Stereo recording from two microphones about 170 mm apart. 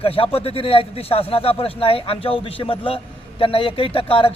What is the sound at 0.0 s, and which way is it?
Speech, 35° left (ahead or behind).